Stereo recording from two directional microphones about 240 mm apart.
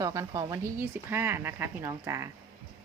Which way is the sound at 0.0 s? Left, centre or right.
Centre.